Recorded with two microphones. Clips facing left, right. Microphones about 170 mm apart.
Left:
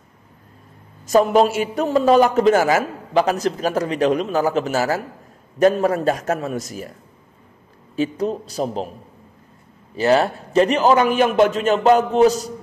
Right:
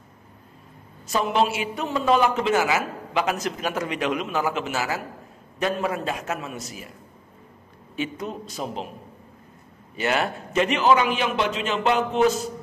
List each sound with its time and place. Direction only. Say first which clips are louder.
1.0 s a man's voice: left 8 dB; 40° left (ahead or behind)
7.9 s a man's voice: left 8 dB; 35° left (ahead or behind)
9.9 s a man's voice: left 8 dB; 35° left (ahead or behind)